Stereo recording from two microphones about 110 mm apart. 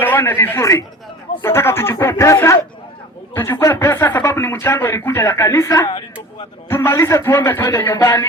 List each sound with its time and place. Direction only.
0.0 s speech: 20° left (ahead or behind)